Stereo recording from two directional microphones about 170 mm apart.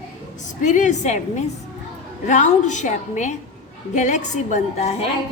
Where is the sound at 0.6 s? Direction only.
45° left (ahead or behind).